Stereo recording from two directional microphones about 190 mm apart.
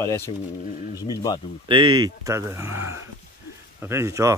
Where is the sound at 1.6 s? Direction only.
25° right (ahead or behind).